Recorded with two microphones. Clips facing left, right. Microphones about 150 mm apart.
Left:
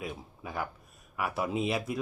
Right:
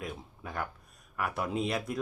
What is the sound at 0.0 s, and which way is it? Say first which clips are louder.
Speech: left 1 dB; 5° left (ahead or behind).